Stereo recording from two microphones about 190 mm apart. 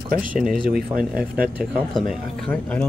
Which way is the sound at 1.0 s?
50° right (ahead or behind).